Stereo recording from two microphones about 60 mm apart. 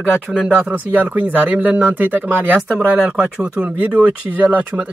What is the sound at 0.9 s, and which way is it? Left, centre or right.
A man's voice, right.